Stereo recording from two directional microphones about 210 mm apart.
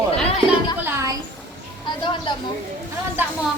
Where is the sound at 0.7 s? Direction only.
10° right (ahead or behind).